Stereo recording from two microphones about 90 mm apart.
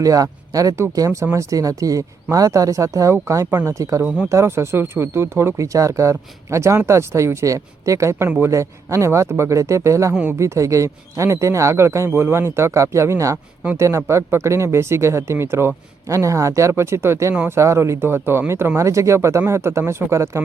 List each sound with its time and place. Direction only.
0.0 s speech: 40° right (ahead or behind)